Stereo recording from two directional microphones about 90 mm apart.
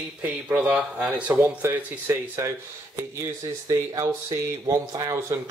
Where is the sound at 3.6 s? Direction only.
35° right (ahead or behind).